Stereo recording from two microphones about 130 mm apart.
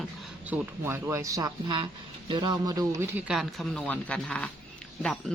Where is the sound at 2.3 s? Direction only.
35° right (ahead or behind).